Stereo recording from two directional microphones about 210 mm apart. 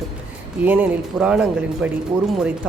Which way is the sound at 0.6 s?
5° right (ahead or behind).